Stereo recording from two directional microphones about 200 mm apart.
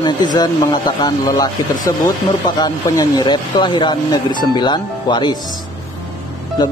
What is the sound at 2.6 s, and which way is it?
Speech, 20° left (ahead or behind).